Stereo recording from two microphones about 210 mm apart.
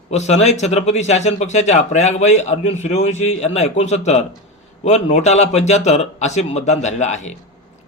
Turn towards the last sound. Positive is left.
turn(degrees=35)  # may be behind; listen again after turning